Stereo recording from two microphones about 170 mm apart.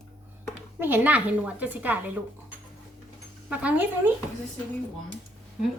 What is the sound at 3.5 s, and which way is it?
Speech, 10° right (ahead or behind).